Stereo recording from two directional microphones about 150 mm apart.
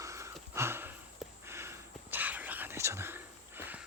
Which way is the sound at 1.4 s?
15° right (ahead or behind).